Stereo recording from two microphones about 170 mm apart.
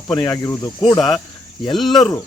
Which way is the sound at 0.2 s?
20° left (ahead or behind).